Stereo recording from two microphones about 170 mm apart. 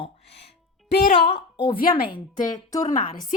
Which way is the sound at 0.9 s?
70° left (ahead or behind).